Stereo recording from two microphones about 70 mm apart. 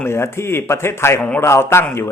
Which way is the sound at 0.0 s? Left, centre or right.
Left.